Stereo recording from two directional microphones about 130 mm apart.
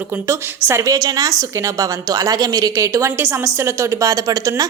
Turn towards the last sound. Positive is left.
turn(degrees=-30)  # may be behind; listen again after turning